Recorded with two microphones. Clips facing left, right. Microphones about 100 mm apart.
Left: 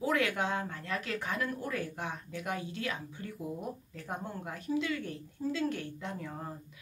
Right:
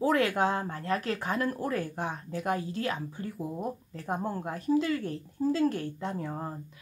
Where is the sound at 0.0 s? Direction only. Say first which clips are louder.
Right 5 dB; 35° right (ahead or behind).